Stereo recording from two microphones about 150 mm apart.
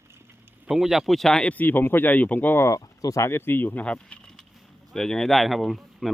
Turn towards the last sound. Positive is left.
turn(degrees=0)  # may be behind; listen again after turning